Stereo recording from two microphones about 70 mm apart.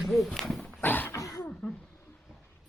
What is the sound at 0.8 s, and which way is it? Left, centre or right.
Cough, left.